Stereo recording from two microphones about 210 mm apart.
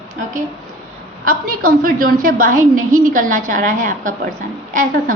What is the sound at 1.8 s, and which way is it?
A woman's voice, 40° right (ahead or behind).